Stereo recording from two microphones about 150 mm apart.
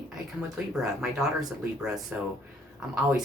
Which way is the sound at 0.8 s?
Centre (ahead or behind).